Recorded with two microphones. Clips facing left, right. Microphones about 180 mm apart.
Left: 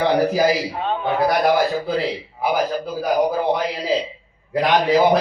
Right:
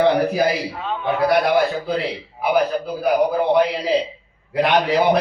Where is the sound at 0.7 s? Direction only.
35° left (ahead or behind).